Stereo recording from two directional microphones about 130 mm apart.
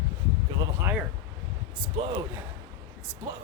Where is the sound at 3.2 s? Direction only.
20° right (ahead or behind).